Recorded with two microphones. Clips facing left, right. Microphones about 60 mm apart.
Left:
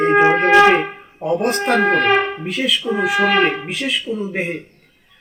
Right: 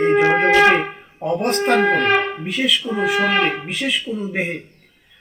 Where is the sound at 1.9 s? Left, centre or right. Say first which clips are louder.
Left 2 dB; left.